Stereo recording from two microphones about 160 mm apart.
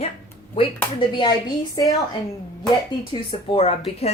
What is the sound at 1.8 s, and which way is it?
Speech, 25° left (ahead or behind).